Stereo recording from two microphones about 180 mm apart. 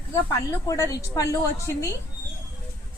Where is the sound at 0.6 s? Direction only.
20° left (ahead or behind).